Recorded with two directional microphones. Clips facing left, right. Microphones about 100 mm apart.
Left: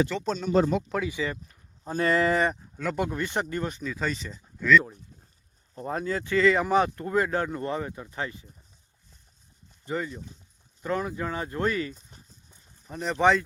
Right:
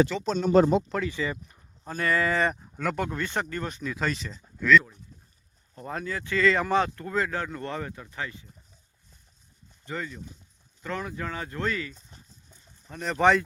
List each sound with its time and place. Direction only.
0.1 s speech: centre (ahead or behind)
0.3 s speech: 60° right (ahead or behind)
0.9 s speech: 5° left (ahead or behind)
1.9 s speech: 25° left (ahead or behind)
2.7 s speech: centre (ahead or behind)
3.0 s speech: 15° left (ahead or behind)
3.7 s speech: 5° left (ahead or behind)
5.7 s speech: 25° left (ahead or behind)
6.8 s speech: 25° left (ahead or behind)
8.1 s speech: 30° left (ahead or behind)
9.8 s speech: 20° left (ahead or behind)
13.1 s speech: centre (ahead or behind)